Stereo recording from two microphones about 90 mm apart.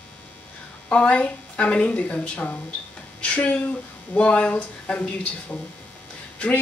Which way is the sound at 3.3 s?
15° left (ahead or behind).